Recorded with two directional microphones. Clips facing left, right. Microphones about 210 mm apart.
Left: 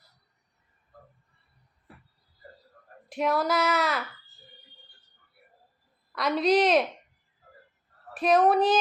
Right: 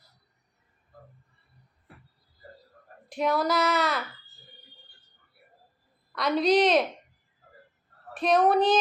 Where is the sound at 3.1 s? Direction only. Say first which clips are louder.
Even; 5° left (ahead or behind).